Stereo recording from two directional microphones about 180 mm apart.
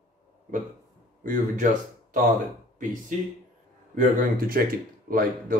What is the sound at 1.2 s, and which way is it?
Speech, 45° right (ahead or behind).